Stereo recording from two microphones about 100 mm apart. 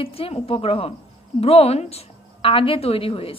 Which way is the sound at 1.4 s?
90° left.